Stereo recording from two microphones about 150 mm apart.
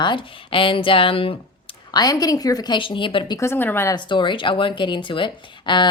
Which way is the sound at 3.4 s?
15° left (ahead or behind).